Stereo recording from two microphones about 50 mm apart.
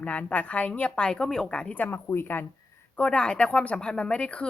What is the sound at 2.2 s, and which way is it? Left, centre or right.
Speech, left.